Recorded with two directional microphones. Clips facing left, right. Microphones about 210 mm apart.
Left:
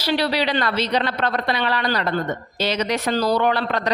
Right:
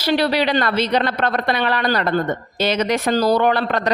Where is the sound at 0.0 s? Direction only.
50° right (ahead or behind).